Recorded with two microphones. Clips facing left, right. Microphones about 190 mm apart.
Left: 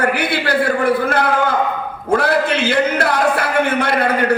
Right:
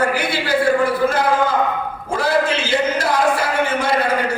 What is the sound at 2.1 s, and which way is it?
A man's voice, 60° left (ahead or behind).